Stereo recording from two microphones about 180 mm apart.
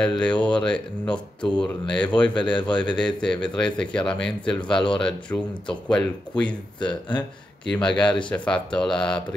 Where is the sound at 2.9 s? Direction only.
5° left (ahead or behind).